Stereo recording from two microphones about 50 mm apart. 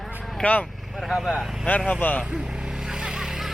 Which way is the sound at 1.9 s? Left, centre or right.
Left.